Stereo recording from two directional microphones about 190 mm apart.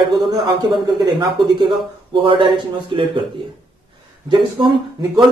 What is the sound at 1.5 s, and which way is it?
Speech, 25° right (ahead or behind).